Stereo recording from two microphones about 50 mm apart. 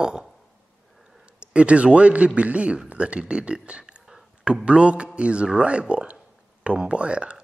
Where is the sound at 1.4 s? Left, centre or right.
Right.